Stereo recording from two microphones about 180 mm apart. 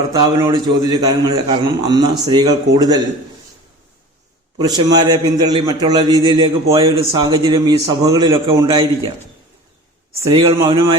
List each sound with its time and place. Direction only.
0.1 s a man's voice: 20° right (ahead or behind)
4.5 s a man's voice: 25° right (ahead or behind)
10.3 s a man's voice: 30° right (ahead or behind)